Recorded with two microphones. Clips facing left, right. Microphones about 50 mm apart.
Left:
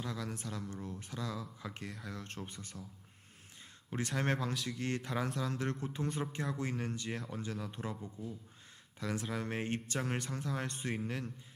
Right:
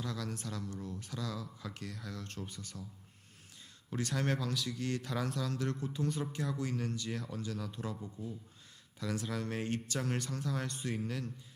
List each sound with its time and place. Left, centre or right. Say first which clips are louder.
0.0 s speech: right 1 dB; left
3.8 s speech: even; left
8.0 s speech: right 1 dB; centre
9.0 s speech: even; left